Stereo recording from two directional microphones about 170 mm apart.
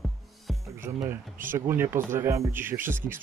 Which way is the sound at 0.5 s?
Centre (ahead or behind).